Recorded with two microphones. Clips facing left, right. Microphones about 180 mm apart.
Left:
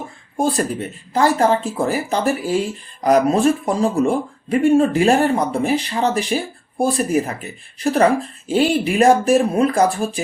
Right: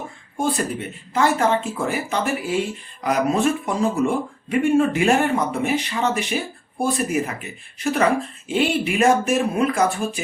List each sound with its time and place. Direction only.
0.3 s speech: 35° left (ahead or behind)